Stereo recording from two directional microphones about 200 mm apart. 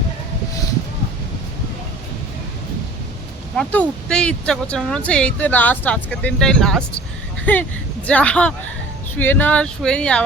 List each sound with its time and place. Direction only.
3.6 s speech: 5° left (ahead or behind)